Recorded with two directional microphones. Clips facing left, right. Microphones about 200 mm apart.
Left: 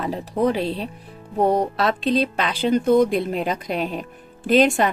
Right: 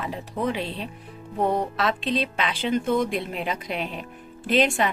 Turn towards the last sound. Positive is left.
turn(degrees=40)  # may be behind; listen again after turning